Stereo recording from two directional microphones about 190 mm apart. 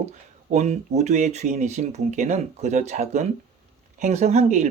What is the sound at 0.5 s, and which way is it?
Speech, 35° right (ahead or behind).